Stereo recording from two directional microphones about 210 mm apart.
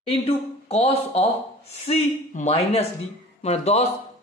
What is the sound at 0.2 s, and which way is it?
Speech, 30° left (ahead or behind).